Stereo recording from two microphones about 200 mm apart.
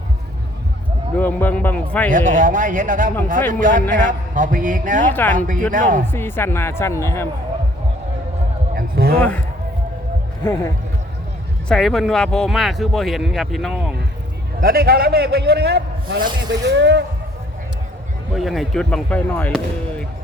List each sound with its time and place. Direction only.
1.1 s speech: 10° left (ahead or behind)
2.0 s a man's voice: 40° right (ahead or behind)
5.1 s speech: 10° left (ahead or behind)
5.7 s a man's voice: 40° right (ahead or behind)
6.1 s speech: 10° left (ahead or behind)
8.7 s a sound: 45° right (ahead or behind)
10.4 s speech: 10° left (ahead or behind)
11.7 s speech: centre (ahead or behind)
14.6 s a man's voice: 50° right (ahead or behind)
18.3 s speech: centre (ahead or behind)